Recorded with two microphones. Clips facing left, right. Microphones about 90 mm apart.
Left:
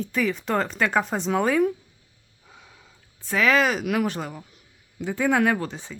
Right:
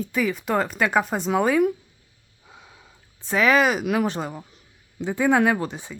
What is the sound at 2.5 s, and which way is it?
Speech, 20° right (ahead or behind).